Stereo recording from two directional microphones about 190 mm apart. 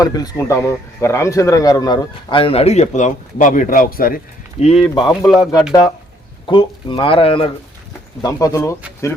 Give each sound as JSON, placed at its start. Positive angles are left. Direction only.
{"t": 0.0, "sound": "speech", "side_deg": 20}
{"t": 4.6, "sound": "speech", "side_deg": 30}
{"t": 6.4, "sound": "speech", "side_deg": 25}
{"t": 8.2, "sound": "speech", "side_deg": 20}